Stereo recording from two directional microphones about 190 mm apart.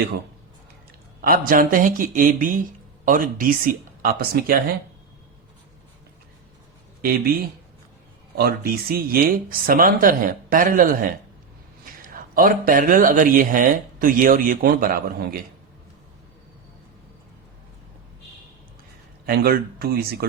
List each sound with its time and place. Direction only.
1.2 s speech: 50° right (ahead or behind)
8.4 s speech: 55° right (ahead or behind)
19.2 s speech: 55° right (ahead or behind)